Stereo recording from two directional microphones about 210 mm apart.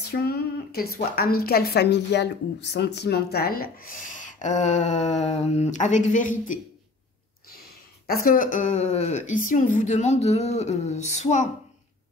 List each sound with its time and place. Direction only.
0.0 s a woman's voice: 50° left (ahead or behind)
8.1 s speech: 45° left (ahead or behind)